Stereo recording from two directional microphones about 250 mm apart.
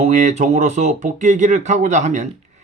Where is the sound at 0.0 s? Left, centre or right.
Right.